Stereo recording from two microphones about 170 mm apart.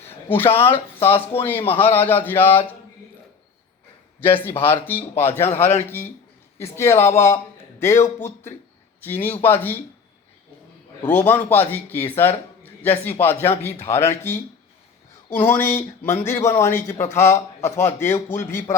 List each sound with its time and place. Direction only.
0.1 s a man's voice: 15° left (ahead or behind)
4.2 s a man's voice: 10° left (ahead or behind)
9.0 s a man's voice: 10° left (ahead or behind)
11.0 s a man's voice: 10° left (ahead or behind)
15.4 s a man's voice: 10° left (ahead or behind)